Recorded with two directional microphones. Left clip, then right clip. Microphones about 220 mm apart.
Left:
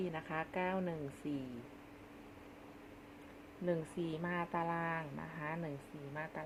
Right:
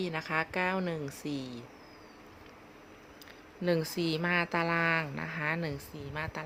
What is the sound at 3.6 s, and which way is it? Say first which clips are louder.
Speech: right 8 dB; 35° right (ahead or behind).